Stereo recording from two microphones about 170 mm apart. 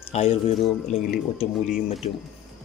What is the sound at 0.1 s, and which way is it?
Speech, 40° left (ahead or behind).